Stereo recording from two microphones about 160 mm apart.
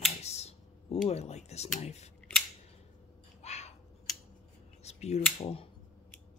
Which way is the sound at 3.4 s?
45° left (ahead or behind).